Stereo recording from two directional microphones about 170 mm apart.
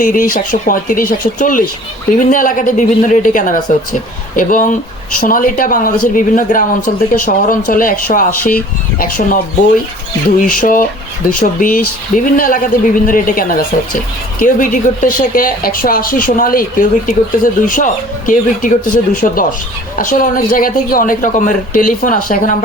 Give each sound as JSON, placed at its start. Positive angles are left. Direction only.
{"t": 0.0, "sound": "a man's voice", "side_deg": 55}